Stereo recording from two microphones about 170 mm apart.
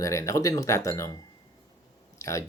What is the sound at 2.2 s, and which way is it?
Speech, 20° left (ahead or behind).